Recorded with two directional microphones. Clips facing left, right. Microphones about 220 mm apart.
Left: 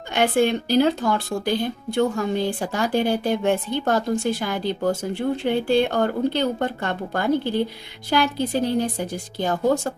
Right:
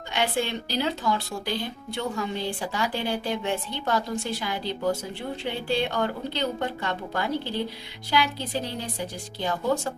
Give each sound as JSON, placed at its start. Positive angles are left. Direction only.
{"t": 0.1, "sound": "speech", "side_deg": 50}